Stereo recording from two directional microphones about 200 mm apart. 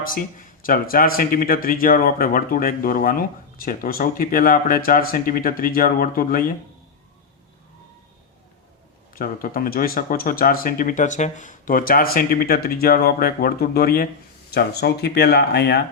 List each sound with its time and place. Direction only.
0.6 s speech: 45° left (ahead or behind)
9.1 s speech: 45° left (ahead or behind)